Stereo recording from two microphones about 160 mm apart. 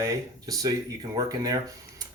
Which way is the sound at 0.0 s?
20° right (ahead or behind).